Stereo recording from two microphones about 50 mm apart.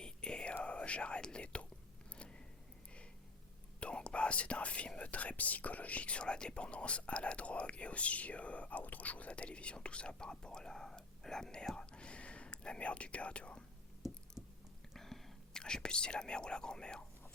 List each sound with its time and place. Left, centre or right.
0.0 s whispering: centre
3.8 s whispering: left
4.9 s speech: left
14.4 s a sound: centre
14.9 s speech: centre